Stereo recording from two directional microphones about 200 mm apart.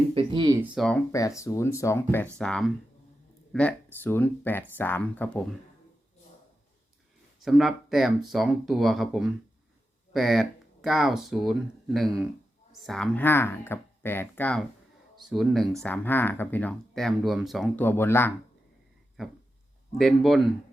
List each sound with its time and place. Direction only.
0.1 s speech: 25° right (ahead or behind)
0.6 s speech: 5° right (ahead or behind)
1.1 s speech: 15° left (ahead or behind)
2.4 s speech: 5° left (ahead or behind)
7.4 s speech: centre (ahead or behind)
12.8 s speech: 5° left (ahead or behind)
20.0 s speech: centre (ahead or behind)